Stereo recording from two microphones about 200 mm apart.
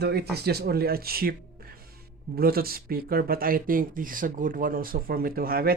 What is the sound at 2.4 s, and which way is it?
Speech, 50° right (ahead or behind).